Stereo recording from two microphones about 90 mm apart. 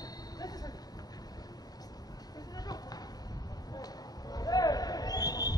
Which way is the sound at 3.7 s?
45° left (ahead or behind).